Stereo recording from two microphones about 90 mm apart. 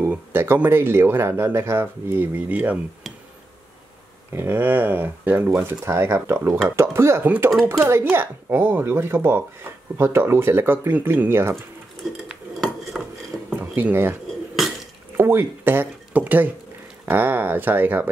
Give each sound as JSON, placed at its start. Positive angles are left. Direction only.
{"t": 0.0, "sound": "speech", "side_deg": -25}
{"t": 4.3, "sound": "speech", "side_deg": -25}
{"t": 12.3, "sound": "dishes", "side_deg": 0}
{"t": 13.6, "sound": "speech", "side_deg": -20}
{"t": 15.1, "sound": "speech", "side_deg": -25}